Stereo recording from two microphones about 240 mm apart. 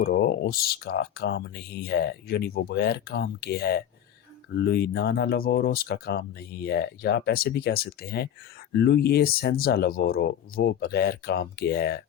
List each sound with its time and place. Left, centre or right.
0.0 s speech: left